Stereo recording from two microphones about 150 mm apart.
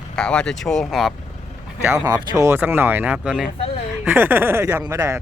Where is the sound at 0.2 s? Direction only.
5° left (ahead or behind).